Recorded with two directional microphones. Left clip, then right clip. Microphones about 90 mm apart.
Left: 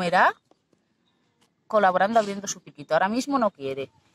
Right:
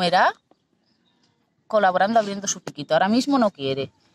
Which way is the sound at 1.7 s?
20° right (ahead or behind).